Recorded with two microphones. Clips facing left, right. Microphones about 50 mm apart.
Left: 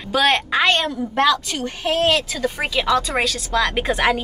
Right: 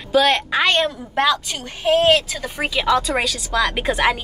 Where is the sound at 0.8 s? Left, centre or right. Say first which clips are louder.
Even; right.